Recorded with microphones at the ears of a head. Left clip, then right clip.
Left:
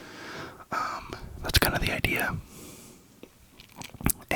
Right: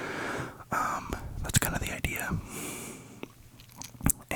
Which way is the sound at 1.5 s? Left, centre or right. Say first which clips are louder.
Left 6 dB; left.